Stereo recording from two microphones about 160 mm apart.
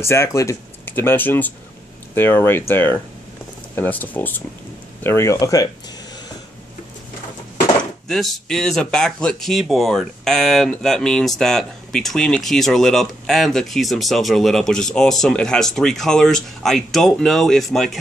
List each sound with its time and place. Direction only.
0.0 s speech: 15° left (ahead or behind)
8.1 s speech: centre (ahead or behind)